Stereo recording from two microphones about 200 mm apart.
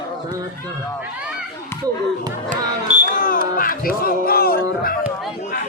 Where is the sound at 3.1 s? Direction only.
45° left (ahead or behind).